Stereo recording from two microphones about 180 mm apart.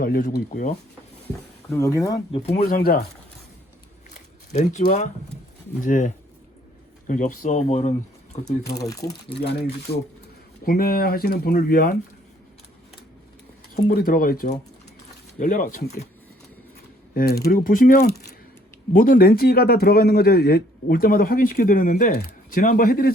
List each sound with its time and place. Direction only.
0.0 s speech: 55° left (ahead or behind)
1.7 s speech: 15° left (ahead or behind)
2.6 s speech: 55° left (ahead or behind)
4.1 s a man's voice: 40° left (ahead or behind)
8.7 s speech: 20° left (ahead or behind)
10.7 s speech: 55° left (ahead or behind)
13.8 s a man's voice: 55° left (ahead or behind)
17.2 s a man's voice: 60° left (ahead or behind)